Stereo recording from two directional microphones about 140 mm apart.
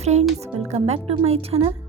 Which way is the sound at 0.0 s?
50° right (ahead or behind).